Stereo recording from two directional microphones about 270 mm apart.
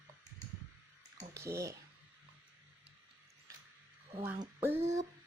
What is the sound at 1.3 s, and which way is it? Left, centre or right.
Speech, centre.